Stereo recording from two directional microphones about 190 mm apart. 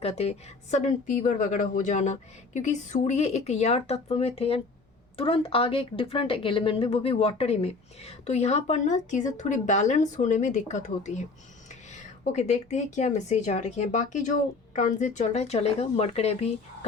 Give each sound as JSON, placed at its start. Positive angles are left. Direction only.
{"t": 0.0, "sound": "speech", "side_deg": 30}
{"t": 12.2, "sound": "speech", "side_deg": 40}